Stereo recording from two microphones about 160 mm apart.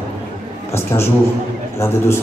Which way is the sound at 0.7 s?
15° left (ahead or behind).